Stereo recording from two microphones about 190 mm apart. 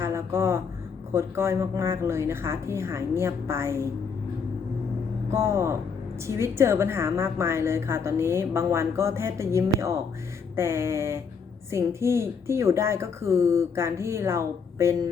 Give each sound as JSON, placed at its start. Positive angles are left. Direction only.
{"t": 0.0, "sound": "a sound", "side_deg": -15}
{"t": 1.1, "sound": "a woman's voice", "side_deg": -15}
{"t": 5.3, "sound": "a woman's voice", "side_deg": -15}